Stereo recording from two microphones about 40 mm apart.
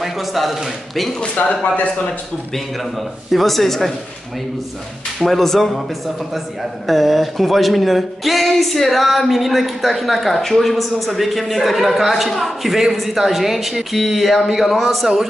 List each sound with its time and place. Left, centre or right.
0.0 s speech: centre
1.4 s speech: left
2.5 s speech: centre
5.2 s speech: centre
6.9 s speech: centre